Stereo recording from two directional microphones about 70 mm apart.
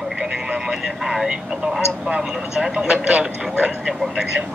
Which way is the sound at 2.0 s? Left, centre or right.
Centre.